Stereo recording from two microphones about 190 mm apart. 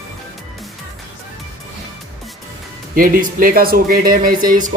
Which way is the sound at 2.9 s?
45° right (ahead or behind).